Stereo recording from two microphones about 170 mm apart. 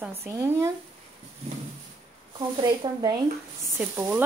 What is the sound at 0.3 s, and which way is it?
Speech, 15° right (ahead or behind).